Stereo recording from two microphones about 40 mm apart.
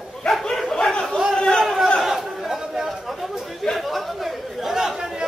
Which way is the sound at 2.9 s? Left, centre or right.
Centre.